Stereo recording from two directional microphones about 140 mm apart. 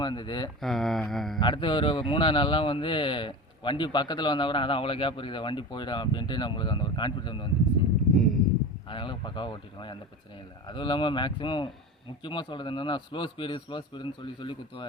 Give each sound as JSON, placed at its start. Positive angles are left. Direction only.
{"t": 0.0, "sound": "speech", "side_deg": 30}
{"t": 0.6, "sound": "mantra", "side_deg": 0}
{"t": 1.4, "sound": "speech", "side_deg": 35}
{"t": 8.9, "sound": "speech", "side_deg": 35}